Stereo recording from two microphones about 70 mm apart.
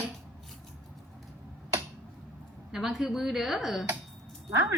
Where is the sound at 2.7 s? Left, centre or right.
Centre.